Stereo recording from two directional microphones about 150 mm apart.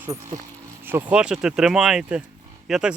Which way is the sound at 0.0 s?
20° right (ahead or behind).